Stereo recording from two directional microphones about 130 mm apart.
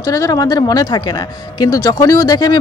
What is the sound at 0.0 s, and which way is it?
A woman's voice, 25° left (ahead or behind).